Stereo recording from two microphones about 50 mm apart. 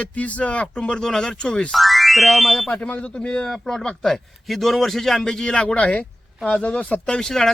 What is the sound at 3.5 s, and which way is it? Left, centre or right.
Speech, centre.